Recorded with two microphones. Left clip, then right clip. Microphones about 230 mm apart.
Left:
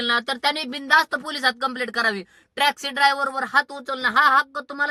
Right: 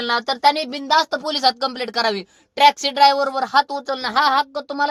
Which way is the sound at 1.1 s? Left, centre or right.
Centre.